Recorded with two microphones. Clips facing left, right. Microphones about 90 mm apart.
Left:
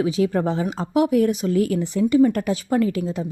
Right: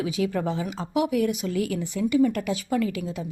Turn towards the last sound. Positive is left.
turn(degrees=35)  # may be behind; listen again after turning